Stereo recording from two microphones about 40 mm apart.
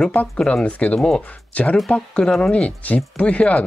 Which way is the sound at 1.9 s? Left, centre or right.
Left.